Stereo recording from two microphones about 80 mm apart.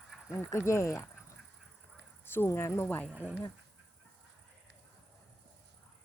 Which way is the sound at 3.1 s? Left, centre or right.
Centre.